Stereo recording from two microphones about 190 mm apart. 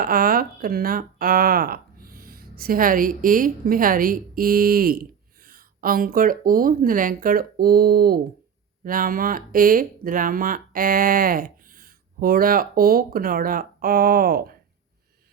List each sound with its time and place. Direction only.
0.0 s speech: 50° right (ahead or behind)